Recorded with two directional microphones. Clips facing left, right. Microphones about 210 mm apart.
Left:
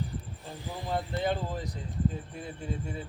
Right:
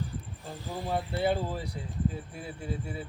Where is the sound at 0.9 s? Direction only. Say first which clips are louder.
Right 2 dB; 10° right (ahead or behind).